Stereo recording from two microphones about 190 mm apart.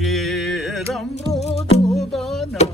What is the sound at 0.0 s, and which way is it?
Music, centre (ahead or behind).